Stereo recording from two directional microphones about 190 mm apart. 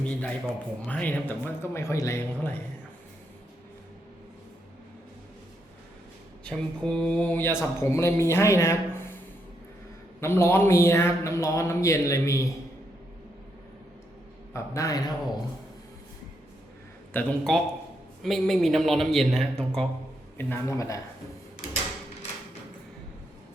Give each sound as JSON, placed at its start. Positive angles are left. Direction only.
{"t": 0.0, "sound": "speech", "side_deg": 5}
{"t": 6.4, "sound": "speech", "side_deg": 5}
{"t": 10.2, "sound": "speech", "side_deg": 15}
{"t": 14.5, "sound": "a man's voice", "side_deg": 15}
{"t": 17.2, "sound": "speech", "side_deg": 5}